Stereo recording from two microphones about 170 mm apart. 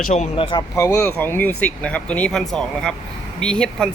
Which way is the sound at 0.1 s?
40° left (ahead or behind).